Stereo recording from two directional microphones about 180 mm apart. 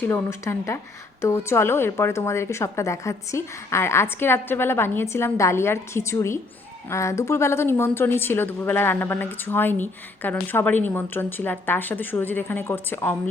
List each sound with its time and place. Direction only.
0.0 s a woman's voice: 10° left (ahead or behind)